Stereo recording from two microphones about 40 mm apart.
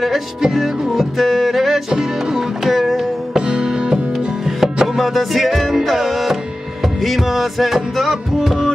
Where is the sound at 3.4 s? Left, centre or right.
Centre.